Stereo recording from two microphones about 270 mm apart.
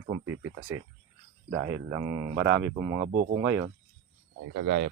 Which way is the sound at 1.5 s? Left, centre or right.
Right.